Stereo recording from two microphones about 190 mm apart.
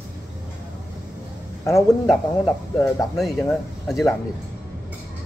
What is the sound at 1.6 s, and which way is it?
Speech, 15° left (ahead or behind).